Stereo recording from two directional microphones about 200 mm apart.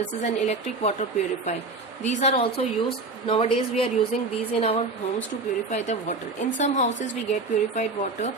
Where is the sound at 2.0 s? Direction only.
30° left (ahead or behind).